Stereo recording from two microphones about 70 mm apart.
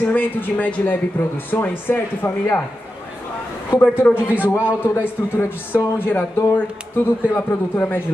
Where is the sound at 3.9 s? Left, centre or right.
Left.